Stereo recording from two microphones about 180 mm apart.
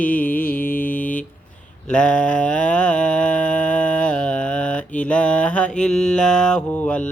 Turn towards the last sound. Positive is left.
turn(degrees=5)  # may be behind; listen again after turning